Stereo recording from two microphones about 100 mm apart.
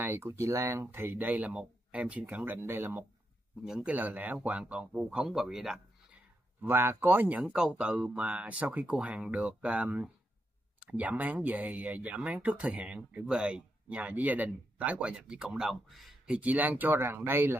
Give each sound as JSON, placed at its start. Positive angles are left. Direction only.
{"t": 0.0, "sound": "speech", "side_deg": -25}
{"t": 3.6, "sound": "speech", "side_deg": -5}
{"t": 3.9, "sound": "speech", "side_deg": -15}
{"t": 6.6, "sound": "speech", "side_deg": -25}
{"t": 16.3, "sound": "speech", "side_deg": -15}